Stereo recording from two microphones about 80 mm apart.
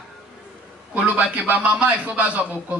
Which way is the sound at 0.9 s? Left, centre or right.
Centre.